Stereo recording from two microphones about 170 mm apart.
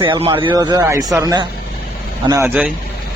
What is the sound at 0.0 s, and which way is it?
A man's voice, 30° right (ahead or behind).